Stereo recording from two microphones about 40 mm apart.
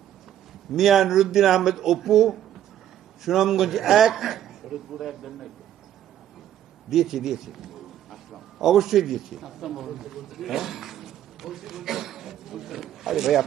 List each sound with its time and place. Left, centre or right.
0.7 s a man's voice: centre
6.9 s a man's voice: centre